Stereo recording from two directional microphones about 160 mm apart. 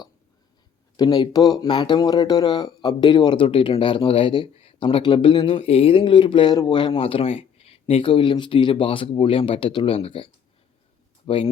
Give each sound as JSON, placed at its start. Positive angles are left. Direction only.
{"t": 0.9, "sound": "speech", "side_deg": 25}
{"t": 11.3, "sound": "speech", "side_deg": 35}